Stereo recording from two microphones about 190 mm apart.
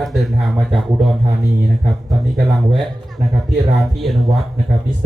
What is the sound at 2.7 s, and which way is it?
Speech, centre (ahead or behind).